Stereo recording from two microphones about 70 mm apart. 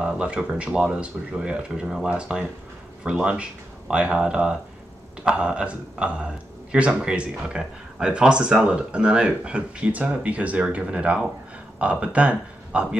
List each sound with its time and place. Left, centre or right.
0.0 s speech: centre